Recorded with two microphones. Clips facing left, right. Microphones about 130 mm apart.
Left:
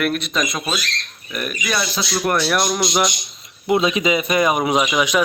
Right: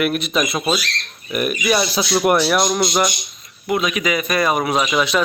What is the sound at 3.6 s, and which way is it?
A man's voice, 25° left (ahead or behind).